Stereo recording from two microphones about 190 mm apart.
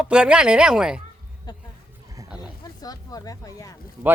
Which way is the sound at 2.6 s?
20° left (ahead or behind).